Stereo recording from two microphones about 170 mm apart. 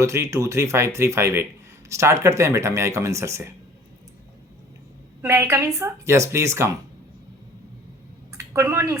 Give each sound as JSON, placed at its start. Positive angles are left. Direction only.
{"t": 0.0, "sound": "speech", "side_deg": -15}
{"t": 5.2, "sound": "speech", "side_deg": -15}
{"t": 8.3, "sound": "a sound", "side_deg": -15}